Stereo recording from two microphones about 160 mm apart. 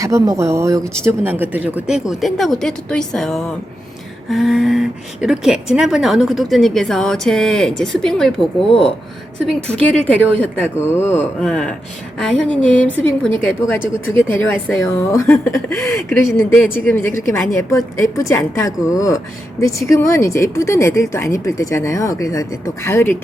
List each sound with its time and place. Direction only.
0.0 s a woman's voice: 20° right (ahead or behind); by 23.1 s 15° left (ahead or behind)